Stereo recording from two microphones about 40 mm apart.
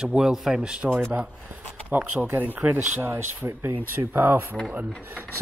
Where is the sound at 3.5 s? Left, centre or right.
Right.